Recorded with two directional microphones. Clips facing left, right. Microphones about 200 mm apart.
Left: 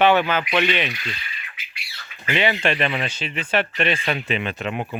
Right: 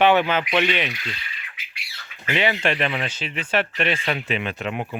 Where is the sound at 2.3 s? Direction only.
5° right (ahead or behind).